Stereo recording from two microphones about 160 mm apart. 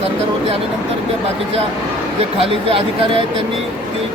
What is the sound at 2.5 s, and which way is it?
Speech, 35° right (ahead or behind).